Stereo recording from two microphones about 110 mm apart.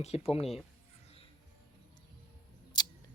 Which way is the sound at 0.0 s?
70° left (ahead or behind).